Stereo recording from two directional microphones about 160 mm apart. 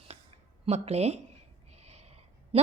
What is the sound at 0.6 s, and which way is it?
Speech, 40° right (ahead or behind).